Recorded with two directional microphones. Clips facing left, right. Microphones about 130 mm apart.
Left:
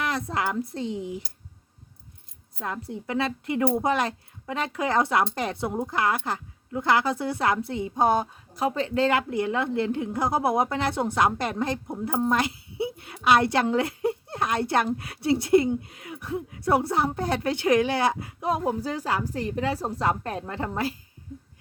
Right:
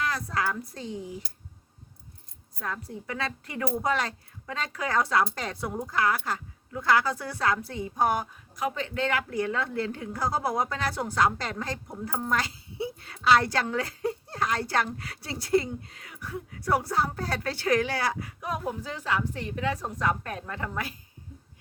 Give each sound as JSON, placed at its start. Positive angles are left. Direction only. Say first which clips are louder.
{"t": 0.0, "sound": "a woman's voice", "louder": "left 2 dB", "side_deg": 25}
{"t": 2.6, "sound": "a woman's voice", "louder": "left 3 dB", "side_deg": 25}